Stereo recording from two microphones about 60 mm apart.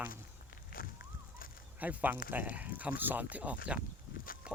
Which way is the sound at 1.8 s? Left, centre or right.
Right.